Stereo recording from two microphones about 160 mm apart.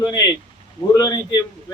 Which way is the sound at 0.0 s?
25° left (ahead or behind).